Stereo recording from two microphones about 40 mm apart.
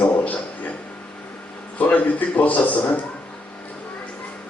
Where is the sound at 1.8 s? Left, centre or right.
Left.